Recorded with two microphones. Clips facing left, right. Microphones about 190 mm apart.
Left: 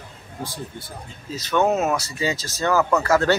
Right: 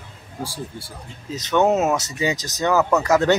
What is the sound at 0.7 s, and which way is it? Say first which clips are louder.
Speech: even; 10° right (ahead or behind).